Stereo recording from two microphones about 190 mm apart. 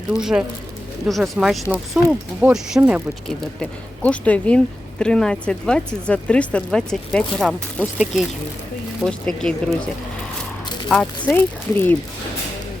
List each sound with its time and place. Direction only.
0.1 s speech: 5° right (ahead or behind)
3.6 s speech: 5° left (ahead or behind)
10.8 s speech: 5° left (ahead or behind)